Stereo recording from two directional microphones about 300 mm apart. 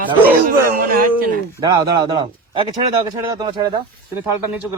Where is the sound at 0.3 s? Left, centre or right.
Right.